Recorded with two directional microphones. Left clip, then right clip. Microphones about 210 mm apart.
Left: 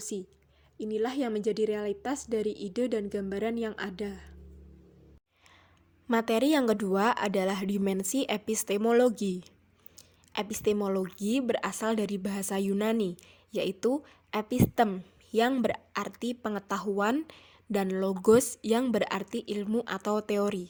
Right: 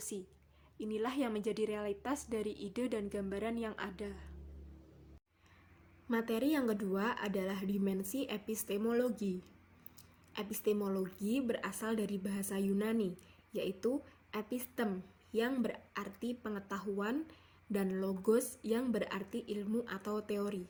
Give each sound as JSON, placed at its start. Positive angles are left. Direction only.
{"t": 0.0, "sound": "a woman's voice", "side_deg": 25}
{"t": 6.1, "sound": "speech", "side_deg": 55}